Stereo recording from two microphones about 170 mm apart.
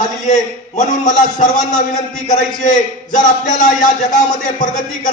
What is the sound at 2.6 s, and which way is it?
A man's voice, 45° left (ahead or behind).